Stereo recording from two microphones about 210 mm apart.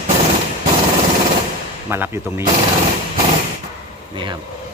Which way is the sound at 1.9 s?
10° right (ahead or behind).